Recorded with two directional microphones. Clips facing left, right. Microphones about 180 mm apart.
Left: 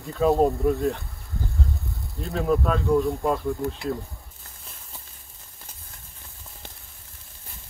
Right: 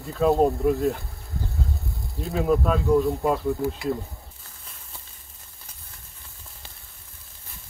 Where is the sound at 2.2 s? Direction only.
5° right (ahead or behind).